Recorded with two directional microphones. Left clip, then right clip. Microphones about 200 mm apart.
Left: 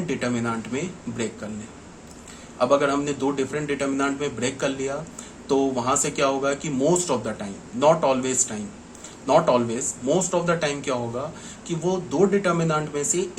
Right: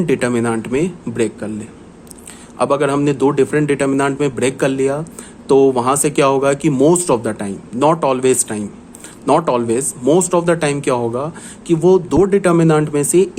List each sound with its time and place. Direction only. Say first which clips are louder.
0.1 s speech: right 9 dB; 60° right (ahead or behind)
2.6 s speech: right 5 dB; 60° right (ahead or behind)